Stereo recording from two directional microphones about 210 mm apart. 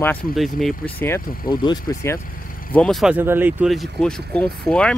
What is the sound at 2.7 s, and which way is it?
Speech, centre (ahead or behind).